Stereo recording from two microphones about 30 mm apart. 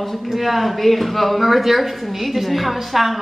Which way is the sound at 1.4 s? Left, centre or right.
Centre.